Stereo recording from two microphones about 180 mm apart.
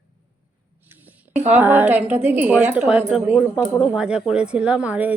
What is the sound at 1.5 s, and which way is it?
Speech, 10° right (ahead or behind).